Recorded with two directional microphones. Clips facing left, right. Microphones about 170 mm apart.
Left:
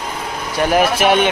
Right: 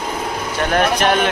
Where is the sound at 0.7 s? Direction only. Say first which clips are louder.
Left 2 dB; 5° left (ahead or behind).